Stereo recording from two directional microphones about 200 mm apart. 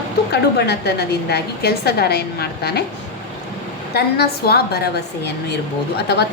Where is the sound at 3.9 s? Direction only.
50° left (ahead or behind).